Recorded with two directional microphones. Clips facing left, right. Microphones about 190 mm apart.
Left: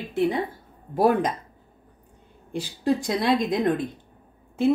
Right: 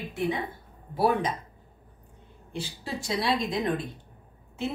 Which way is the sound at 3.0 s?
50° left (ahead or behind).